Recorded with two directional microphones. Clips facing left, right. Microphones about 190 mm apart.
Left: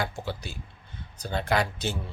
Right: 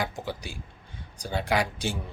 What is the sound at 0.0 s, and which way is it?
A man's voice, 15° right (ahead or behind).